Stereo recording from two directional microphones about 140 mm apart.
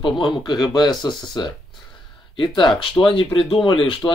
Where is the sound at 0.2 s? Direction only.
30° left (ahead or behind).